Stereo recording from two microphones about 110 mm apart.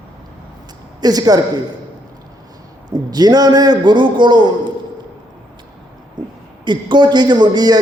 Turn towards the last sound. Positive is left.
turn(degrees=-40)  # may be behind; listen again after turning